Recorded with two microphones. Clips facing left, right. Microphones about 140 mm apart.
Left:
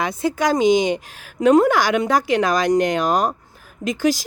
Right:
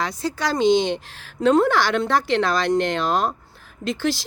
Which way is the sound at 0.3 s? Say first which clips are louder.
Left 2 dB; 15° left (ahead or behind).